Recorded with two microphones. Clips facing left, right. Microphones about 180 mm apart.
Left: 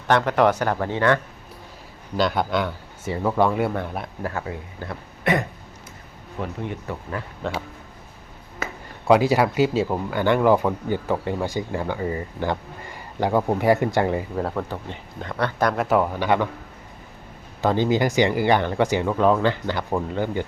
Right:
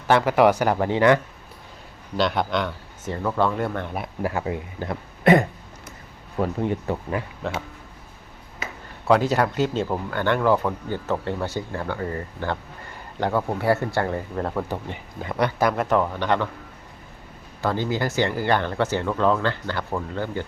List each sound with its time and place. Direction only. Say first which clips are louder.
0.1 s speech: right 1 dB; 5° right (ahead or behind)
2.1 s speech: left 1 dB; centre (ahead or behind); by 5.4 s 25° right (ahead or behind)
6.4 s speech: right 6 dB; 40° right (ahead or behind)
7.4 s speech: left 3 dB; centre (ahead or behind)
9.0 s speech: left 2 dB; 10° left (ahead or behind)
14.3 s speech: left 1 dB; centre (ahead or behind)
14.7 s speech: right 2 dB; 10° right (ahead or behind); by 16.5 s 10° left (ahead or behind)
17.6 s speech: left 4 dB; 20° left (ahead or behind)